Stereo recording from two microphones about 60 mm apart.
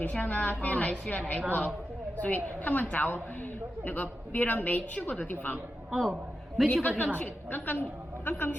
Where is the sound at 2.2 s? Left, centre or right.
Left.